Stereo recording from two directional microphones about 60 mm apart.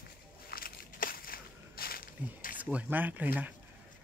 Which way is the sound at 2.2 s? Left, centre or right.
Right.